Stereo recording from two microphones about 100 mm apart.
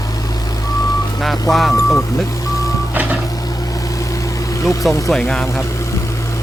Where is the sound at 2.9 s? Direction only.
15° right (ahead or behind).